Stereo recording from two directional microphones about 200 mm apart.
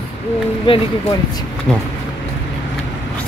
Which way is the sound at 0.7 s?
25° left (ahead or behind).